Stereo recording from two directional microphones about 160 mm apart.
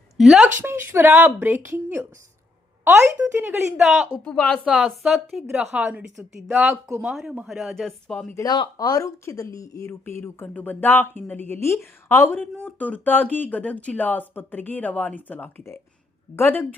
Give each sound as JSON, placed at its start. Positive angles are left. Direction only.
{"t": 0.2, "sound": "a woman's voice", "side_deg": -5}
{"t": 0.6, "sound": "speech", "side_deg": -15}
{"t": 3.8, "sound": "a woman's voice", "side_deg": 0}
{"t": 8.4, "sound": "speech", "side_deg": 25}